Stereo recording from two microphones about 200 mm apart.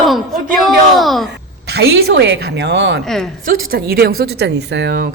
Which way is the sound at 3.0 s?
Centre (ahead or behind).